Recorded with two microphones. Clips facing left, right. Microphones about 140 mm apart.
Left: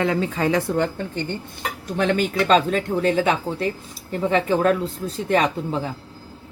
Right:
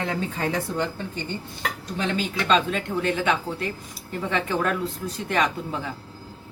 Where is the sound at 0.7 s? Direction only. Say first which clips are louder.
Left 5 dB; 60° left (ahead or behind).